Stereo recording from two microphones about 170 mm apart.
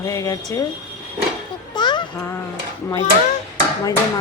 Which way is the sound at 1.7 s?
25° left (ahead or behind).